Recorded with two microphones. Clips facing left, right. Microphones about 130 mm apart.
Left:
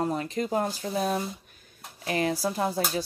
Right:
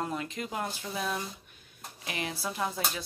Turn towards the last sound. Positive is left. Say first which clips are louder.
# left 6 dB
turn(degrees=35)  # may be behind; listen again after turning